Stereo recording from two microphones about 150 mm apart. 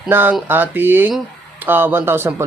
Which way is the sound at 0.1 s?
15° right (ahead or behind).